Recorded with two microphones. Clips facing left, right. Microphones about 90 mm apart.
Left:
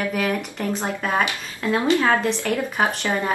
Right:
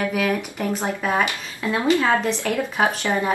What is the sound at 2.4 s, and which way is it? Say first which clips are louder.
Speech: right 1 dB; 15° right (ahead or behind).